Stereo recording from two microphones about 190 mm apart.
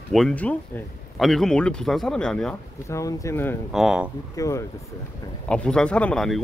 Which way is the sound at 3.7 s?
Centre (ahead or behind).